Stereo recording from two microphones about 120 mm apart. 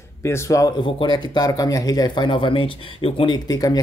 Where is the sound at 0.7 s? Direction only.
40° left (ahead or behind).